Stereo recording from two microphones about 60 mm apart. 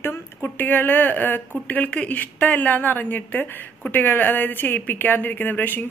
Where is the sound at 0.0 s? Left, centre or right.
Left.